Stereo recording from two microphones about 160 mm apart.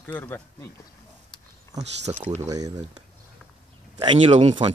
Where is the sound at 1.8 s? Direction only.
40° right (ahead or behind).